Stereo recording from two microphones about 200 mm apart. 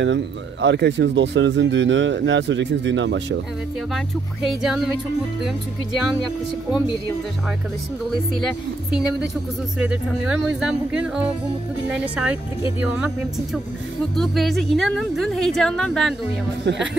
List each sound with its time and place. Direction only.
0.0 s speech: 65° right (ahead or behind)
4.6 s a woman's voice: centre (ahead or behind)
8.4 s a woman's voice: centre (ahead or behind)
16.6 s speech: 60° right (ahead or behind)